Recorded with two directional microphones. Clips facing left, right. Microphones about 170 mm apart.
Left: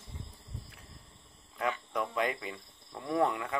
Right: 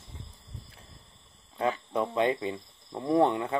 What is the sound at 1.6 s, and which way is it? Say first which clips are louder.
Speech: right 5 dB; 30° right (ahead or behind).